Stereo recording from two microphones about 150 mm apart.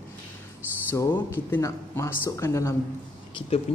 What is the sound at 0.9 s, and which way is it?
Speech, 15° left (ahead or behind).